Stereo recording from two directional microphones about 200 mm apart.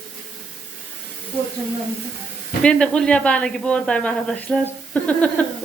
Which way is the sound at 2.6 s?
5° left (ahead or behind).